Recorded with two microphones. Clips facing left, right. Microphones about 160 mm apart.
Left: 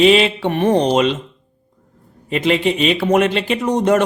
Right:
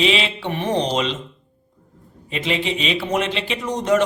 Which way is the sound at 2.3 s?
55° left (ahead or behind).